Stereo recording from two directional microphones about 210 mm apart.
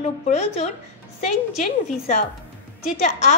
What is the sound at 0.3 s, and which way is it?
Speech, 30° left (ahead or behind).